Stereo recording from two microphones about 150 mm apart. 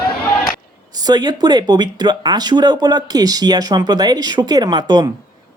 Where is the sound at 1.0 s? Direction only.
30° right (ahead or behind).